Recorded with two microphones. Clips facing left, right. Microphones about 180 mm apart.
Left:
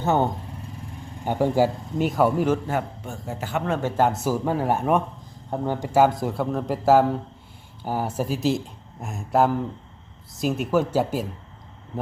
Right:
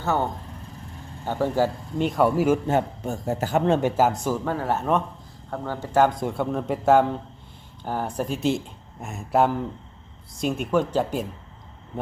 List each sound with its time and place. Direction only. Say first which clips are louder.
0.0 s speech: left 3 dB; 20° left (ahead or behind); by 2.6 s 5° right (ahead or behind)
3.0 s a man's voice: right 6 dB; 40° right (ahead or behind)
3.7 s speech: right 4 dB; 15° right (ahead or behind)
3.9 s speech: even; centre (ahead or behind)